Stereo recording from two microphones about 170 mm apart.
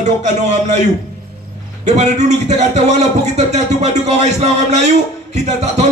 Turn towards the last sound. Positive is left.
turn(degrees=-40)  # may be behind; listen again after turning